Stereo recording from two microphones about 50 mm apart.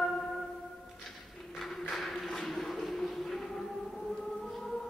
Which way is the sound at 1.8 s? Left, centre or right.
Centre.